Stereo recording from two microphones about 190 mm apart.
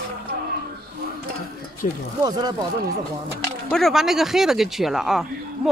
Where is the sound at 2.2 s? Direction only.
20° right (ahead or behind).